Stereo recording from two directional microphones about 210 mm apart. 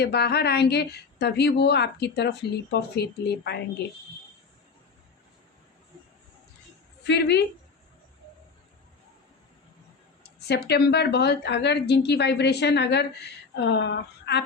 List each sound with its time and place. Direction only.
0.0 s a woman's voice: 50° left (ahead or behind)
7.1 s a woman's voice: 50° left (ahead or behind)
10.5 s a woman's voice: 50° left (ahead or behind)